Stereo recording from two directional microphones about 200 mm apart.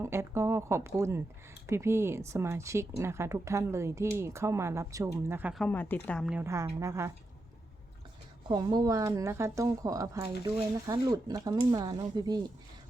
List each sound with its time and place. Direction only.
0.0 s speech: 15° right (ahead or behind)
5.6 s speech: 10° left (ahead or behind)
6.4 s speech: 15° right (ahead or behind)
8.4 s speech: 20° right (ahead or behind)